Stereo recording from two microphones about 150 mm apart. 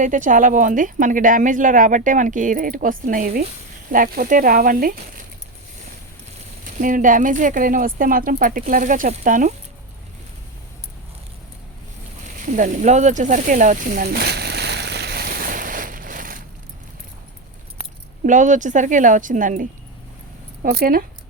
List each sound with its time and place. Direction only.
0.0 s speech: 60° right (ahead or behind)
6.7 s speech: 60° right (ahead or behind)
12.4 s a sound: 60° right (ahead or behind)
18.3 s speech: 60° right (ahead or behind)
20.6 s speech: 80° right